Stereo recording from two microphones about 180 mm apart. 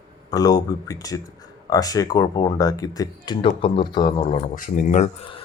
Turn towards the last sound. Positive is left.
turn(degrees=45)  # may be behind; listen again after turning